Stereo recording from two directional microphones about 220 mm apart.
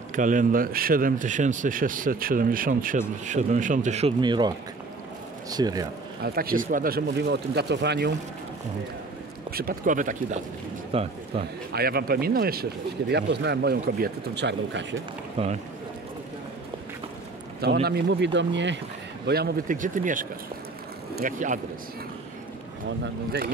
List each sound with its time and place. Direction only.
0.1 s a man's voice: 35° right (ahead or behind); by 5.9 s 15° right (ahead or behind)
6.2 s speech: 40° right (ahead or behind)
9.5 s speech: 45° right (ahead or behind); by 11.4 s 25° right (ahead or behind)
11.7 s speech: 45° right (ahead or behind)
15.3 s speech: 30° right (ahead or behind)
17.8 s speech: 50° right (ahead or behind)